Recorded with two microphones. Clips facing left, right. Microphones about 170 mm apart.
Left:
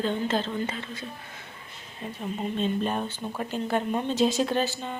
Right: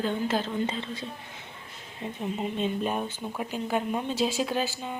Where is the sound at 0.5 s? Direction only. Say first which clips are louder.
Right 2 dB; 25° right (ahead or behind).